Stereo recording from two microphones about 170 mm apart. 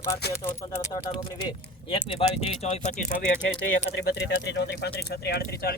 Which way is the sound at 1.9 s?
30° left (ahead or behind).